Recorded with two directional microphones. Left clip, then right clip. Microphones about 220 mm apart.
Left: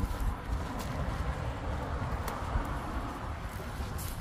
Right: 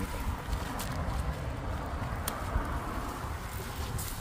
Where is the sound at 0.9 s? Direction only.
10° left (ahead or behind).